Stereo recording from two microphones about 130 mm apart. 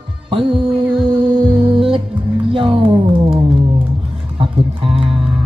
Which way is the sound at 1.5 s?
40° right (ahead or behind).